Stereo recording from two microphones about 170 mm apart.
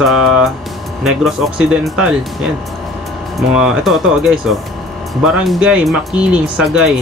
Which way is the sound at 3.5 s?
5° right (ahead or behind).